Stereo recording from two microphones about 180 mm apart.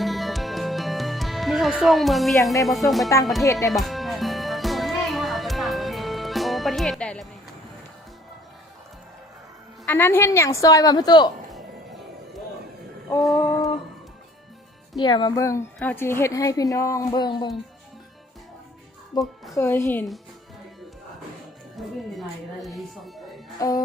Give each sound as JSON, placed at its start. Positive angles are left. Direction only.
{"t": 0.0, "sound": "music", "side_deg": 0}
{"t": 2.6, "sound": "speech", "side_deg": 0}
{"t": 3.4, "sound": "a woman's voice", "side_deg": 15}
{"t": 3.7, "sound": "music", "side_deg": 0}
{"t": 9.8, "sound": "a woman's voice", "side_deg": 10}
{"t": 11.5, "sound": "music", "side_deg": 0}
{"t": 15.0, "sound": "a woman's voice", "side_deg": 25}
{"t": 19.1, "sound": "a woman's voice", "side_deg": 20}
{"t": 21.8, "sound": "speech", "side_deg": 0}
{"t": 23.6, "sound": "a woman's voice", "side_deg": 20}